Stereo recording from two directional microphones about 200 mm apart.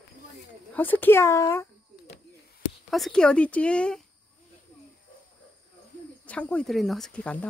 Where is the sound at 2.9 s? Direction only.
Centre (ahead or behind).